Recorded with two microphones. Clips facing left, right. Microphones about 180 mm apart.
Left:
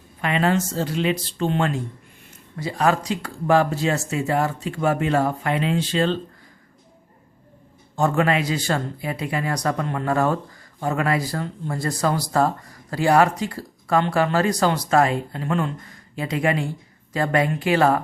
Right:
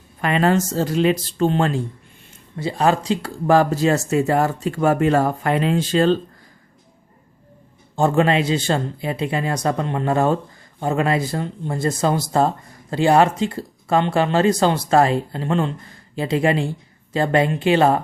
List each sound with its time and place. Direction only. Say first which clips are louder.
0.2 s speech: right 3 dB; 40° right (ahead or behind)
7.9 s speech: right 3 dB; 30° right (ahead or behind)